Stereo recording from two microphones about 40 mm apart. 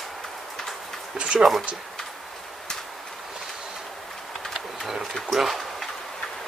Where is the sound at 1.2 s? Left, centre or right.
Right.